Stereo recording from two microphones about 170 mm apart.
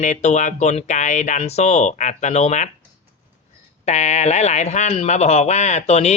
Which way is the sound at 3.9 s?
40° left (ahead or behind).